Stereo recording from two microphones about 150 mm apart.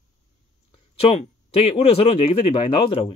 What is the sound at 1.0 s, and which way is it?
Speech, 40° left (ahead or behind).